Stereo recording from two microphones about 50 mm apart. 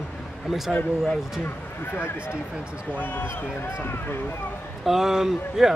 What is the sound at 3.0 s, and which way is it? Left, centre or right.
Speech, left.